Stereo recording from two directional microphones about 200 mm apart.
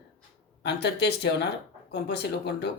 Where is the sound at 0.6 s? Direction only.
55° left (ahead or behind).